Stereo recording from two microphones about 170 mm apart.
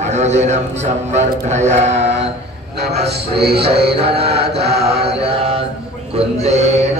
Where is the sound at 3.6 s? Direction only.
35° right (ahead or behind).